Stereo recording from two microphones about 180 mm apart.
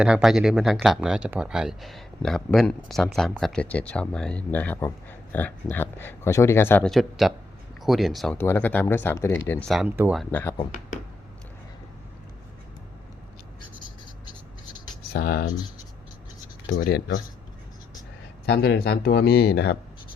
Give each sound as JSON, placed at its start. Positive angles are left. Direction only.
{"t": 0.0, "sound": "speech", "side_deg": -5}
{"t": 8.4, "sound": "speech", "side_deg": 10}
{"t": 9.5, "sound": "speech", "side_deg": 5}
{"t": 9.8, "sound": "speech", "side_deg": -10}
{"t": 10.2, "sound": "speech", "side_deg": 10}
{"t": 15.1, "sound": "speech", "side_deg": 60}
{"t": 18.4, "sound": "speech", "side_deg": 65}